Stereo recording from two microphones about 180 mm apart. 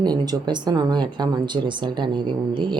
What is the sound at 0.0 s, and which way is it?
Speech, 20° right (ahead or behind).